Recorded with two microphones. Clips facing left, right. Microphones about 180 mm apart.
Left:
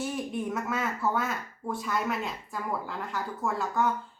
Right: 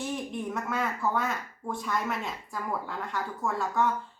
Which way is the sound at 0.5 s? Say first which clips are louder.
Even; 5° left (ahead or behind).